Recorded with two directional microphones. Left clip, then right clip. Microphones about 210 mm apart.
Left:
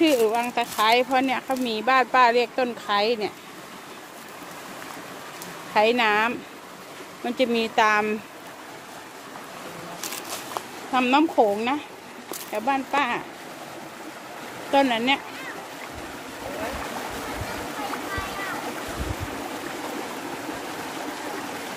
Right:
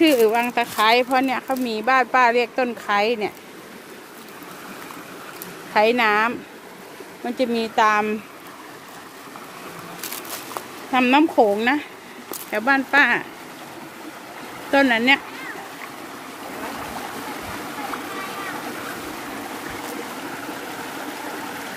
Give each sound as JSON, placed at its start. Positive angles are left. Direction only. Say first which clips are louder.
{"t": 0.0, "sound": "speech", "louder": "right 4 dB", "side_deg": -25}
{"t": 5.7, "sound": "speech", "louder": "right 3 dB", "side_deg": -15}
{"t": 10.9, "sound": "speech", "louder": "right 3 dB", "side_deg": -25}
{"t": 14.7, "sound": "speech", "louder": "right 4 dB", "side_deg": -25}